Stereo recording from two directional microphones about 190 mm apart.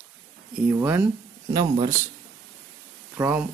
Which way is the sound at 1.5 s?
25° right (ahead or behind).